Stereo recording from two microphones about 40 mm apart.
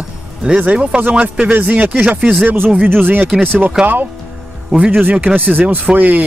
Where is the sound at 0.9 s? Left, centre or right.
Right.